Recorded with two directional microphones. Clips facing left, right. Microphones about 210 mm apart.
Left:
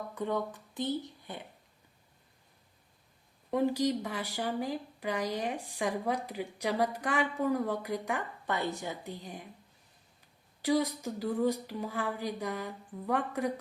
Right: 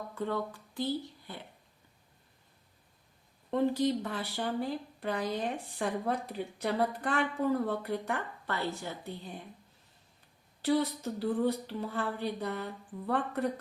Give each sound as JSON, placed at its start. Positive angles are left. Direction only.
{"t": 0.1, "sound": "speech", "side_deg": 15}
{"t": 3.5, "sound": "speech", "side_deg": 10}
{"t": 10.6, "sound": "speech", "side_deg": 10}